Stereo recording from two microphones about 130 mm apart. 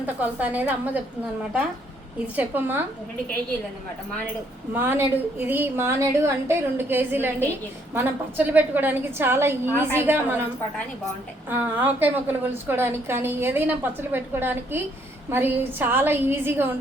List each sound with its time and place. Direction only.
0.0 s a woman's voice: 15° right (ahead or behind)
2.2 s a woman's voice: 10° right (ahead or behind)
4.7 s a woman's voice: 15° right (ahead or behind)
11.4 s a woman's voice: 15° right (ahead or behind)